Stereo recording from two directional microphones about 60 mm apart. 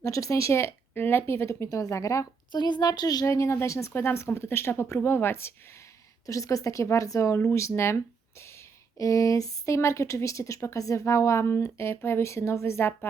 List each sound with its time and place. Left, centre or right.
0.0 s speech: left
1.5 s a woman's voice: left
2.8 s speech: left
3.2 s a woman's voice: left
6.2 s a woman's voice: left
7.7 s speech: left